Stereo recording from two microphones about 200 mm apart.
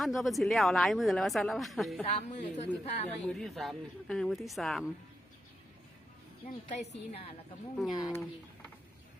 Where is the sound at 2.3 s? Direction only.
35° left (ahead or behind).